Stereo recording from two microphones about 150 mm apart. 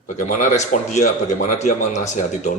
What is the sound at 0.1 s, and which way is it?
Speech, 55° left (ahead or behind).